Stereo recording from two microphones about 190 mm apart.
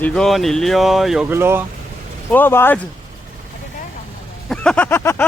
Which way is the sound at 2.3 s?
10° left (ahead or behind).